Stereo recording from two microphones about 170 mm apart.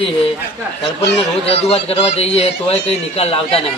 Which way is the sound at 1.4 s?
35° left (ahead or behind).